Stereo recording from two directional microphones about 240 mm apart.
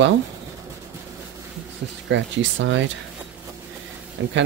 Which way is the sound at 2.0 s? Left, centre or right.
Right.